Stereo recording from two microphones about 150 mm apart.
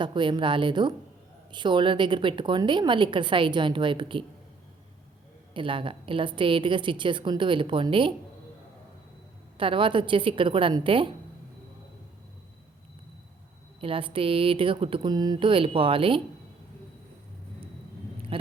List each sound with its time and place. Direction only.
0.0 s a woman's voice: 30° right (ahead or behind)
5.5 s a woman's voice: 35° right (ahead or behind)
9.6 s a woman's voice: 35° right (ahead or behind)
13.8 s a woman's voice: 35° right (ahead or behind)